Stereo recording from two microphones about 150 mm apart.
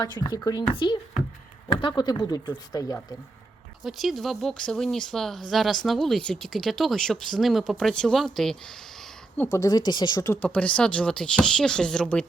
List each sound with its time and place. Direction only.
0.0 s a child's voice: 25° left (ahead or behind)
3.8 s speech: centre (ahead or behind)
9.5 s speech: 25° left (ahead or behind)
10.4 s speech: 10° left (ahead or behind)